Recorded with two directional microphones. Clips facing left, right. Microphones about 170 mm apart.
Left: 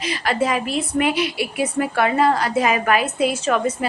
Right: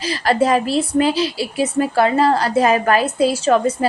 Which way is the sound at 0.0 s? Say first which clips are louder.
Right 4 dB; 35° right (ahead or behind).